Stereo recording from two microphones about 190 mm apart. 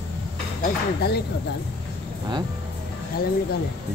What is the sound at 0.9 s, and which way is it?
Speech, 60° left (ahead or behind).